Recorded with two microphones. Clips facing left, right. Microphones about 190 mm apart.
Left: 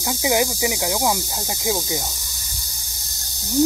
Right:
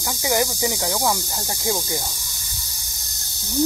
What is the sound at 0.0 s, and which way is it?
Speech, 15° left (ahead or behind).